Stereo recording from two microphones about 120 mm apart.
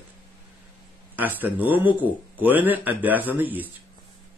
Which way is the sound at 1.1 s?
15° right (ahead or behind).